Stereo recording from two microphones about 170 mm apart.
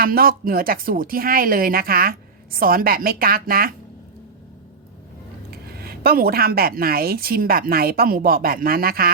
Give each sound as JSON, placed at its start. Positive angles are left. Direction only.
{"t": 0.0, "sound": "speech", "side_deg": -60}
{"t": 5.5, "sound": "speech", "side_deg": -65}